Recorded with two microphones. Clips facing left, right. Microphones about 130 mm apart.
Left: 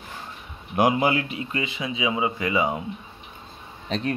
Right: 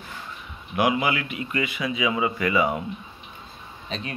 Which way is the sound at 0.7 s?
40° left (ahead or behind).